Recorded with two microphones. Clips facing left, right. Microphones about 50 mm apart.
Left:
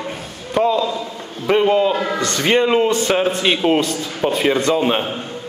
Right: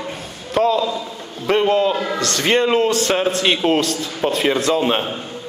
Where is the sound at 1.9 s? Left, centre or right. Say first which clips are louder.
Left 1 dB; centre.